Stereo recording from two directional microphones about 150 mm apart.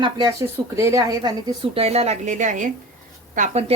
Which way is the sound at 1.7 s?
40° right (ahead or behind).